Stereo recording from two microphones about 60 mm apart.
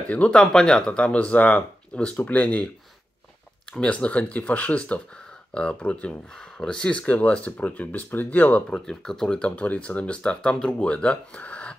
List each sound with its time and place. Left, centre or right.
0.1 s speech: left
0.4 s speech: centre
3.8 s speech: centre
8.6 s speech: centre
9.6 s speech: left